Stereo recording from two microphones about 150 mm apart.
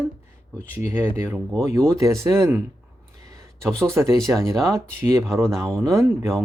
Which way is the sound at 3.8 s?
20° right (ahead or behind).